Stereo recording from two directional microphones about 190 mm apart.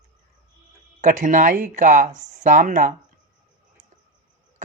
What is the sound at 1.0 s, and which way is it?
Speech, 40° right (ahead or behind).